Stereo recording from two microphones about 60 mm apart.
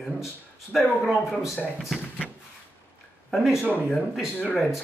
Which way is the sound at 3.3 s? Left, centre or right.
Centre.